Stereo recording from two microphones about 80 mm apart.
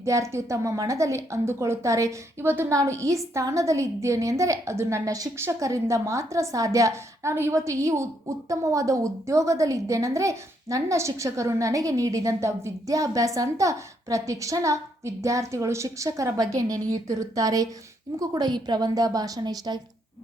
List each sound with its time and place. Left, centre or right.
0.0 s a woman's voice: right
2.5 s a woman's voice: right
2.7 s a woman's voice: right
18.2 s a woman's voice: right